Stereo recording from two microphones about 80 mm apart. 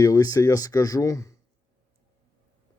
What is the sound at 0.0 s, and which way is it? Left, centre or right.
Speech, left.